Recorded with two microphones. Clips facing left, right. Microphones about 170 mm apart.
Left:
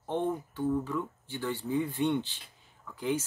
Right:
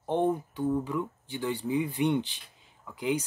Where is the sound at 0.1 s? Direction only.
15° right (ahead or behind).